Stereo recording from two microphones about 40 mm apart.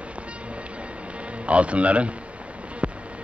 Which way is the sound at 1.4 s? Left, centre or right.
Right.